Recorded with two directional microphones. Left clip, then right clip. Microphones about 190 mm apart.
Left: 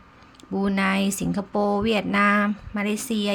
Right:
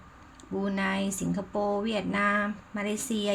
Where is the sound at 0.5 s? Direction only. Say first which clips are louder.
Left 6 dB; 25° left (ahead or behind).